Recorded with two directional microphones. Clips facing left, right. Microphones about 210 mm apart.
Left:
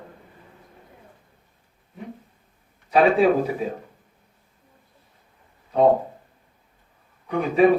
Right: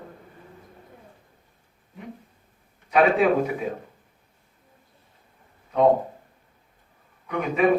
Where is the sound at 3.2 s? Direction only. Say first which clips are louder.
Left 2 dB; 30° left (ahead or behind).